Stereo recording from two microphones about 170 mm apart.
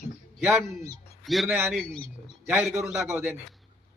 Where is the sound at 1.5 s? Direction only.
15° right (ahead or behind).